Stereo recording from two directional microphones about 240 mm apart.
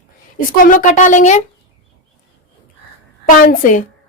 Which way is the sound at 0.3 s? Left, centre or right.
Left.